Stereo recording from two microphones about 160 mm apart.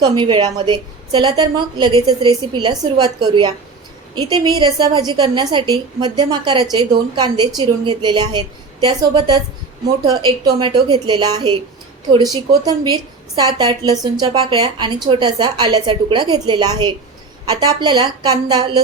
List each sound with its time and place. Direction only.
0.0 s a woman's voice: 30° right (ahead or behind)